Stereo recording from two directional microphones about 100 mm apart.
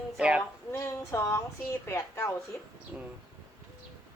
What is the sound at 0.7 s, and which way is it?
Speech, 30° left (ahead or behind).